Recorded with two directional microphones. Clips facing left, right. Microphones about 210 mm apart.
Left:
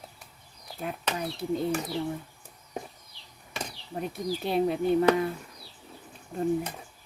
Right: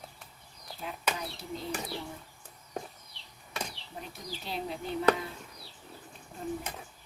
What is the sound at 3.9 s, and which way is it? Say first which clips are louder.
Speech: left 12 dB; 75° left (ahead or behind).